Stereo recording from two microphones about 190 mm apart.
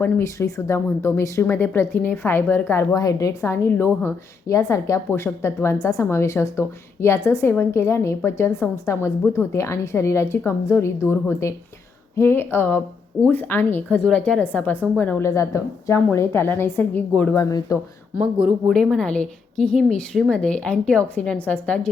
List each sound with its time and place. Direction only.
0.0 s speech: 15° left (ahead or behind)
18.7 s a woman's voice: 5° left (ahead or behind)